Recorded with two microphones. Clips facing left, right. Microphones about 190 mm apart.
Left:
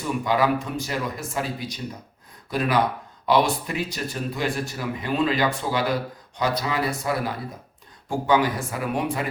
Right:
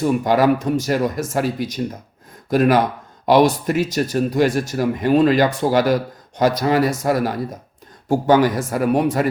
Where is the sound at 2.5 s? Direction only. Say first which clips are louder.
Right 8 dB; 45° right (ahead or behind).